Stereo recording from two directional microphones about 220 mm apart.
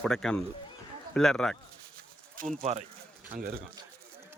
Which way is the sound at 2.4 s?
40° right (ahead or behind).